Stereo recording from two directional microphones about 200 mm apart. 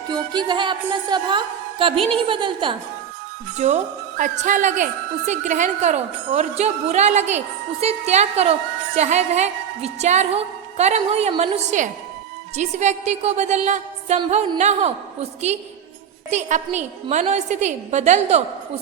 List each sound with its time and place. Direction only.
0.1 s a woman's voice: 20° right (ahead or behind)